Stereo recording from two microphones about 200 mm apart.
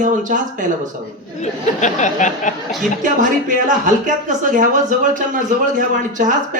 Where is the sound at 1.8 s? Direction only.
35° left (ahead or behind).